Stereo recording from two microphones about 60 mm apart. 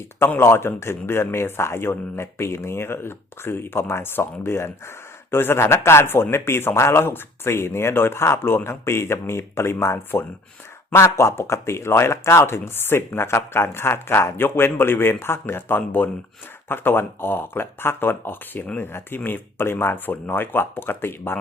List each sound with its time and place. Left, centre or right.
0.3 s speech: left